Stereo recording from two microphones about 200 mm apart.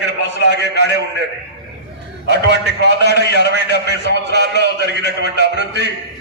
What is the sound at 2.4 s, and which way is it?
Speech, 55° right (ahead or behind).